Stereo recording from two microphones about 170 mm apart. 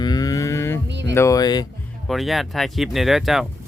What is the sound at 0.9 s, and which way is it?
Music, 90° right.